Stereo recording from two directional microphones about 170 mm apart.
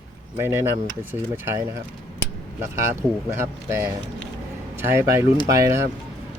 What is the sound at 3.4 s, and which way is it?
Speech, 15° right (ahead or behind).